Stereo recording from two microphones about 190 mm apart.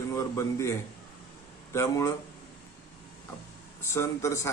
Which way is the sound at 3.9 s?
15° left (ahead or behind).